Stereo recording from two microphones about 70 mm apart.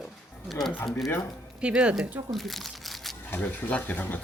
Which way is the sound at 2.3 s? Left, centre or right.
Centre.